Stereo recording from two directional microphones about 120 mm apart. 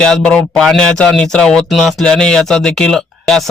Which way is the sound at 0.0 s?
5° left (ahead or behind).